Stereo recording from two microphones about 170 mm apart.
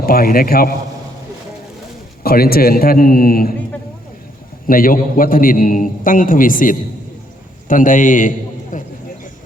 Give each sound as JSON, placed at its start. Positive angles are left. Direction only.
{"t": 0.0, "sound": "a man's voice", "side_deg": 60}
{"t": 2.2, "sound": "a man's voice", "side_deg": 65}
{"t": 4.6, "sound": "a man's voice", "side_deg": 55}